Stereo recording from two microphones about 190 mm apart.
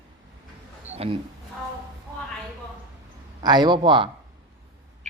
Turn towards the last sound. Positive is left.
turn(degrees=-25)  # may be behind; listen again after turning